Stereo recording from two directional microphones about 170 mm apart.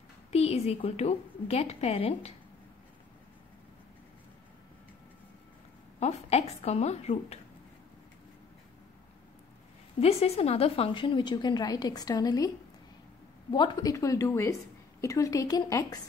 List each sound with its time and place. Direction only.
0.3 s a woman's voice: 40° left (ahead or behind)
5.9 s a woman's voice: 40° left (ahead or behind)
9.9 s a woman's voice: 35° left (ahead or behind); by 12.4 s 20° left (ahead or behind)
13.5 s a woman's voice: 25° left (ahead or behind)